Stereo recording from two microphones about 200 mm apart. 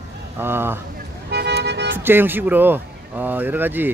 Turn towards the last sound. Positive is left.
turn(degrees=-10)  # may be behind; listen again after turning